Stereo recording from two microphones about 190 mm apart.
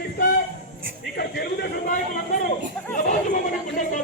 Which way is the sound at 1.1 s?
55° left (ahead or behind).